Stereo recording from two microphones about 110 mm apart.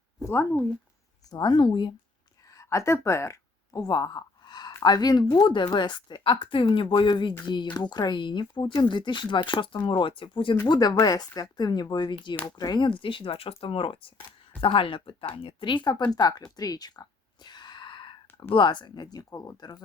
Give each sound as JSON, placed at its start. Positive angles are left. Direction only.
{"t": 0.2, "sound": "speech", "side_deg": 20}
{"t": 1.3, "sound": "speech", "side_deg": 40}
{"t": 2.5, "sound": "a sound", "side_deg": 30}
{"t": 4.8, "sound": "speech", "side_deg": 40}
{"t": 10.7, "sound": "speech", "side_deg": 35}
{"t": 16.6, "sound": "a sound", "side_deg": 35}
{"t": 18.5, "sound": "speech", "side_deg": 45}
{"t": 19.1, "sound": "speech", "side_deg": 30}